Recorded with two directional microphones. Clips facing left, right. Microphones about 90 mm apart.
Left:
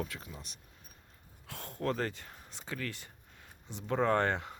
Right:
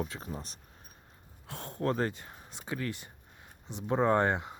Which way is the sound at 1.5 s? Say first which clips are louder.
Right 3 dB; 20° right (ahead or behind).